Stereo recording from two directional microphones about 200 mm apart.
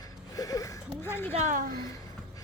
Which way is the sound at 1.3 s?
40° right (ahead or behind).